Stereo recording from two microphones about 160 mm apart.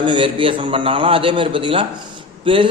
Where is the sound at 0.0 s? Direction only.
30° right (ahead or behind).